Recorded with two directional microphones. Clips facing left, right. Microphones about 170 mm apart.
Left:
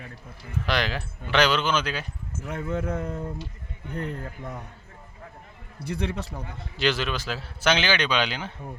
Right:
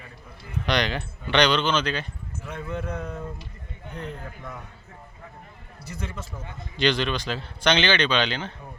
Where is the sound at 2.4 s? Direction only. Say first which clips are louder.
Left 3 dB; 45° left (ahead or behind).